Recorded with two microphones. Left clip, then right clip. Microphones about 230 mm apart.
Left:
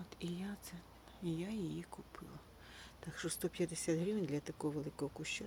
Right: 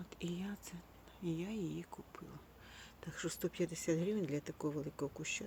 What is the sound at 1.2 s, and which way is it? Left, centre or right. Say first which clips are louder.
Speech: right 1 dB; centre.